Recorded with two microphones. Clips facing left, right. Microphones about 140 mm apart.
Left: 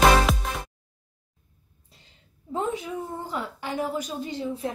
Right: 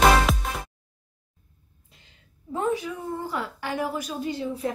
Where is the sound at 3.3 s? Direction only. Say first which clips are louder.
Right 1 dB; 20° left (ahead or behind).